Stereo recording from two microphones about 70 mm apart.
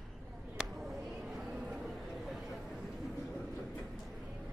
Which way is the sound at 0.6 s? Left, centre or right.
Centre.